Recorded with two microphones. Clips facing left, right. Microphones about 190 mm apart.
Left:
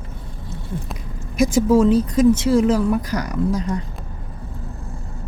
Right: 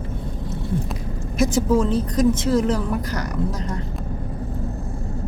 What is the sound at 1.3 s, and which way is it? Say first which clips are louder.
Speech: left 3 dB; 10° left (ahead or behind).